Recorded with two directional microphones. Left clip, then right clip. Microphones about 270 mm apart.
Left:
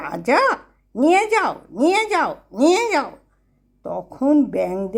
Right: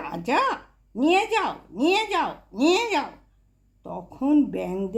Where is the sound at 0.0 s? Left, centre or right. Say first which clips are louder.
Left 6 dB; left.